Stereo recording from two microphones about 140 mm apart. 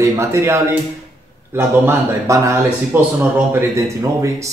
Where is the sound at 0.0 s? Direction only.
20° right (ahead or behind).